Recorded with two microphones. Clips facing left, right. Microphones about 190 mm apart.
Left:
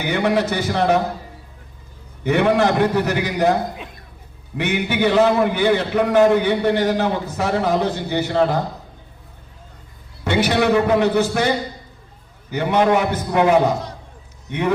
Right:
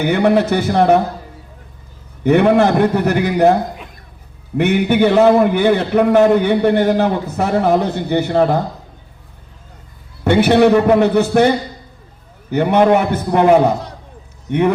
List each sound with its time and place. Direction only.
0.0 s a man's voice: 55° right (ahead or behind)
2.2 s a man's voice: 55° right (ahead or behind)
4.5 s a man's voice: 55° right (ahead or behind)
10.2 s a man's voice: 55° right (ahead or behind)